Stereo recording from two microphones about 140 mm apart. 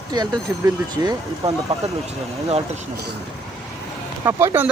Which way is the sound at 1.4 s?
45° right (ahead or behind).